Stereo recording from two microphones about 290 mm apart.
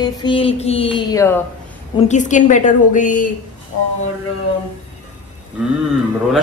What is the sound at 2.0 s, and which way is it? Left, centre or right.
A woman's voice, left.